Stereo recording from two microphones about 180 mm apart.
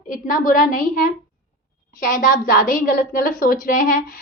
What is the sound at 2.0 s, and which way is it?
A woman's voice, 45° left (ahead or behind).